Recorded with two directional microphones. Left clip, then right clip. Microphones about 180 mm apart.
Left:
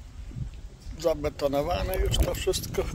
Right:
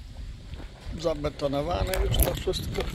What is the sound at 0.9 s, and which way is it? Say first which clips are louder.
Speech: left 2 dB; 25° left (ahead or behind).